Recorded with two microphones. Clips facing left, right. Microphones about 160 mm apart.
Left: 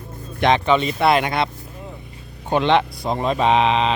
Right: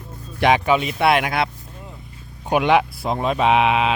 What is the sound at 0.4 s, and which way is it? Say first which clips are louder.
Speech: even; 10° right (ahead or behind).